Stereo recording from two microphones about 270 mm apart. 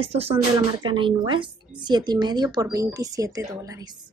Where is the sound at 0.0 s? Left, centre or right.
Right.